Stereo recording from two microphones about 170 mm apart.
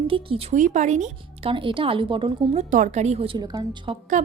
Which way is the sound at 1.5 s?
30° right (ahead or behind).